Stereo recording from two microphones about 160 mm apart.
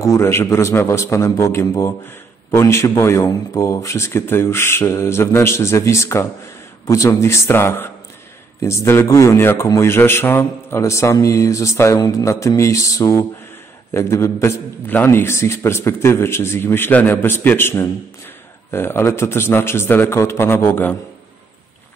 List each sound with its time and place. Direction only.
0.0 s speech: 15° left (ahead or behind)